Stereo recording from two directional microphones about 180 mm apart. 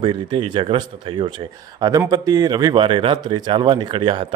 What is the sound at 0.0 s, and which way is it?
A man's voice, 25° right (ahead or behind).